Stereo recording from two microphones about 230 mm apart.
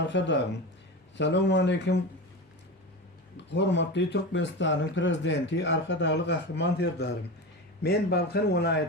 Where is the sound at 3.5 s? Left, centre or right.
Left.